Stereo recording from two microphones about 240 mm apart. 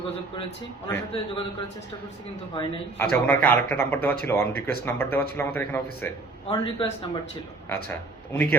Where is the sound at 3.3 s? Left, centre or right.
Centre.